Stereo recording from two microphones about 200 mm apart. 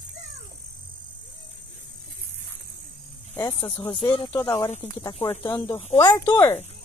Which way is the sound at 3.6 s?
25° left (ahead or behind).